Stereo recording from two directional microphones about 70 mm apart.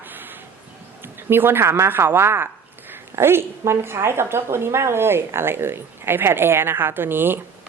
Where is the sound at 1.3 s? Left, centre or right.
Right.